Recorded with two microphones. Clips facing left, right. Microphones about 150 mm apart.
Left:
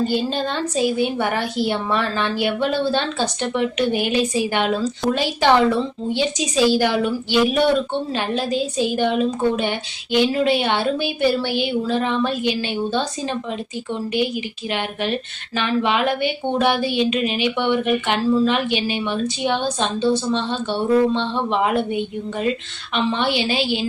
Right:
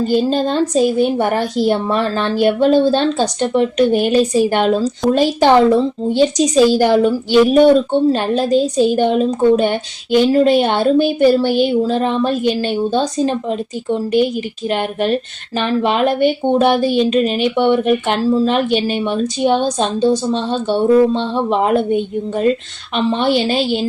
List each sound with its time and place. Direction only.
0.0 s a woman's voice: 40° right (ahead or behind)
14.7 s a woman's voice: 45° right (ahead or behind)